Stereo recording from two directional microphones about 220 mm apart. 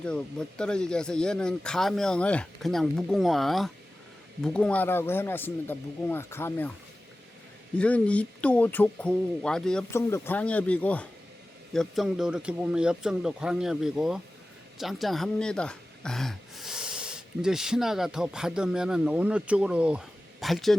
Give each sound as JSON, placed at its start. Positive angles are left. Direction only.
{"t": 0.0, "sound": "speech", "side_deg": 5}
{"t": 7.8, "sound": "speech", "side_deg": 5}